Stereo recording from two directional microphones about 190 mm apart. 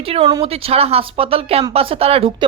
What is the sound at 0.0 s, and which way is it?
Speech, 30° right (ahead or behind).